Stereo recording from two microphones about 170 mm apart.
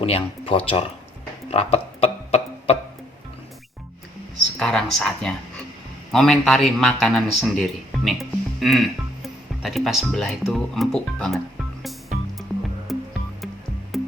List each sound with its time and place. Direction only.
0.0 s speech: 35° left (ahead or behind)
1.5 s music: 40° left (ahead or behind)
4.5 s a man's voice: 5° left (ahead or behind)
12.9 s music: centre (ahead or behind)